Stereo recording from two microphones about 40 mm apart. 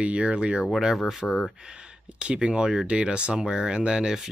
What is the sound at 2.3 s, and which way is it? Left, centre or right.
Speech, right.